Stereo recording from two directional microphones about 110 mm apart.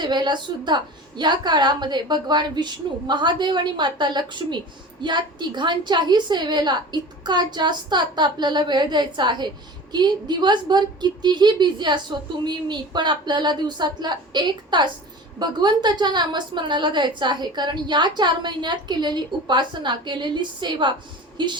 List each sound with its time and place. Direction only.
0.0 s a woman's voice: 40° right (ahead or behind)